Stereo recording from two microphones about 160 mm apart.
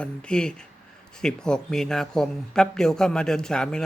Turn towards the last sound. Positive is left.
turn(degrees=5)  # may be behind; listen again after turning